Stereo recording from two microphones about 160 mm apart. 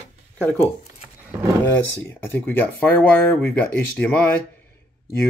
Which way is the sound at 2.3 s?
10° left (ahead or behind).